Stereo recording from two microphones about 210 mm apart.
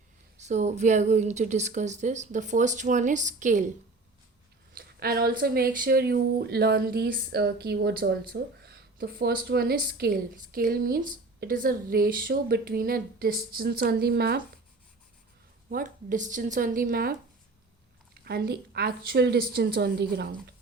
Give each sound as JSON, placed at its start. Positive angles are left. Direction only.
{"t": 0.3, "sound": "a woman's voice", "side_deg": -35}
{"t": 4.7, "sound": "speech", "side_deg": -45}
{"t": 15.7, "sound": "a woman's voice", "side_deg": -40}